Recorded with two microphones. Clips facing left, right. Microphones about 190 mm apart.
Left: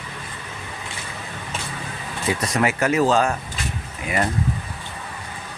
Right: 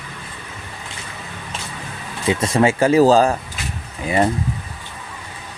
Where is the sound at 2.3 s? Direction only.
25° right (ahead or behind).